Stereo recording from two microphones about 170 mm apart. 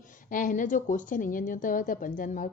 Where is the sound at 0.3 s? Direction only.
50° left (ahead or behind).